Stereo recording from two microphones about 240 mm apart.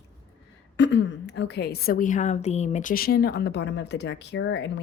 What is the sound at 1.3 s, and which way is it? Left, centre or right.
Speech, left.